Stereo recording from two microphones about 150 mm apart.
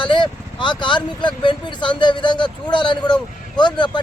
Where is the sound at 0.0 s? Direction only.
30° left (ahead or behind).